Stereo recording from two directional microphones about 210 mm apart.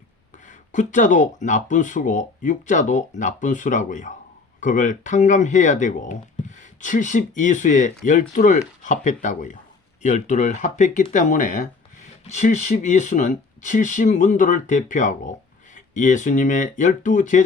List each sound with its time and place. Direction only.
0.4 s speech: 35° left (ahead or behind)